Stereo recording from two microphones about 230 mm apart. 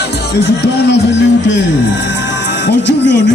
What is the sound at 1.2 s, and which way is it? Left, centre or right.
Music, left.